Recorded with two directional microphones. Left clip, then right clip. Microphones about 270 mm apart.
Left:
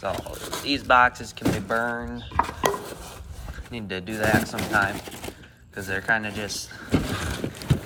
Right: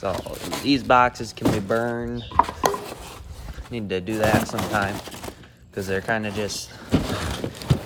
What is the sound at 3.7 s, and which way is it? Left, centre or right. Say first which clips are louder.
Speech: right 5 dB; right.